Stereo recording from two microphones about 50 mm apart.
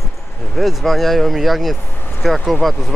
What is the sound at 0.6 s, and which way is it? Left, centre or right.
Speech, centre.